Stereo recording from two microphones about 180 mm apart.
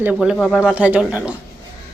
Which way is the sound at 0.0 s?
10° right (ahead or behind).